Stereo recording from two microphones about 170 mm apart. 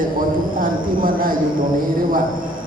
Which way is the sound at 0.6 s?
55° right (ahead or behind).